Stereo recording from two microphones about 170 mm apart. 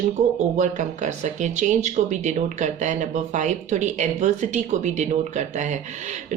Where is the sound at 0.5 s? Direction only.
45° right (ahead or behind).